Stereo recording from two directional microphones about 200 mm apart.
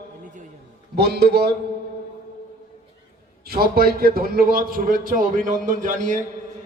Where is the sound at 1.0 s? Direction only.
55° right (ahead or behind).